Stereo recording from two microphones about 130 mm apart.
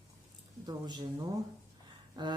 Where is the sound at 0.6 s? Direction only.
35° right (ahead or behind).